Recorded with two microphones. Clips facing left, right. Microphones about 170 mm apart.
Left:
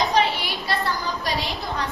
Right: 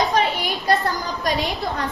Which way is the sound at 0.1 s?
50° right (ahead or behind).